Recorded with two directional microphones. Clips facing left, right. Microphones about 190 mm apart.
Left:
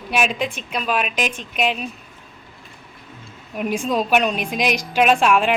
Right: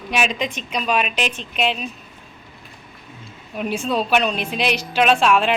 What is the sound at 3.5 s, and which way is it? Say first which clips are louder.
A woman's voice: left 1 dB; 10° left (ahead or behind).